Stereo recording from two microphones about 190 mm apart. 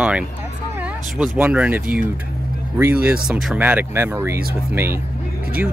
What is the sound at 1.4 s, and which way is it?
Speech, 10° right (ahead or behind).